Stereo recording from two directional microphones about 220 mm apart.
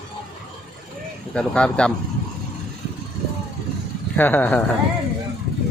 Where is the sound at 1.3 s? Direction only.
5° left (ahead or behind).